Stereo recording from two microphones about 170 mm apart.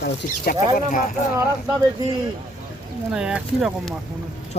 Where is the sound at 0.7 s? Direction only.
50° left (ahead or behind).